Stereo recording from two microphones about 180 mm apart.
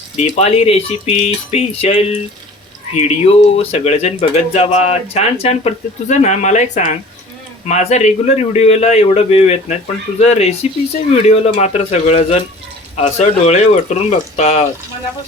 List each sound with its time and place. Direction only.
0.2 s speech: 35° left (ahead or behind)